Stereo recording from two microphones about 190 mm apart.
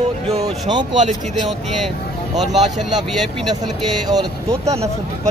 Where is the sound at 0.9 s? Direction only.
40° right (ahead or behind).